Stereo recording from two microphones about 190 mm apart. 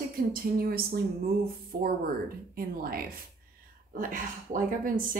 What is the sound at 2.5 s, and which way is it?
A woman's voice, 50° right (ahead or behind).